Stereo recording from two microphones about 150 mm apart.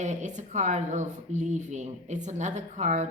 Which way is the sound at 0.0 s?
55° right (ahead or behind).